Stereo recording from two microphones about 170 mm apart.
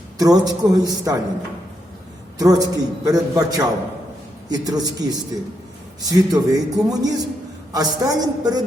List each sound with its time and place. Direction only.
0.2 s a man's voice: 20° right (ahead or behind)
2.4 s a man's voice: 20° right (ahead or behind)